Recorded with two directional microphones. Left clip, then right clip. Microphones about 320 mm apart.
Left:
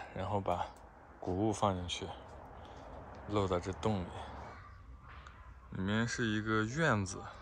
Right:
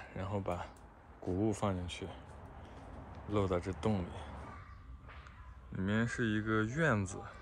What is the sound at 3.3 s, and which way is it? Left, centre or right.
Speech, centre.